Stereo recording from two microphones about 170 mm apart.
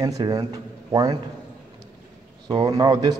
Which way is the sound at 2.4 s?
25° right (ahead or behind).